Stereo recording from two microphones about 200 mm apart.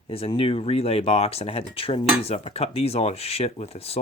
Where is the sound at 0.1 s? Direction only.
30° left (ahead or behind).